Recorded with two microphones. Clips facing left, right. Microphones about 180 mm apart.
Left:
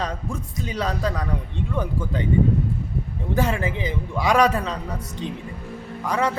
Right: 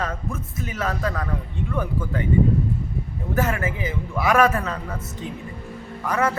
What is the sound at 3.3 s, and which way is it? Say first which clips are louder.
A man's voice: left 1 dB; 15° left (ahead or behind).